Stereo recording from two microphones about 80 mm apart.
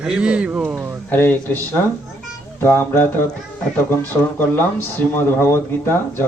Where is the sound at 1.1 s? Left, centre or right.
Left.